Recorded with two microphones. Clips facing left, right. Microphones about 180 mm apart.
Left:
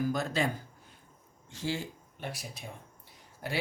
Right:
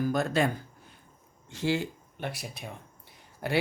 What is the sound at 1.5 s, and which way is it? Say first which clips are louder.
Speech: right 6 dB; 65° right (ahead or behind).